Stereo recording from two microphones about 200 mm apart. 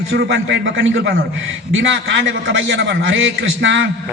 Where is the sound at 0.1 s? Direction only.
70° right (ahead or behind).